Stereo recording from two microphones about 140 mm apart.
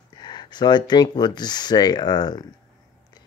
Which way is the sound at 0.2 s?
30° left (ahead or behind).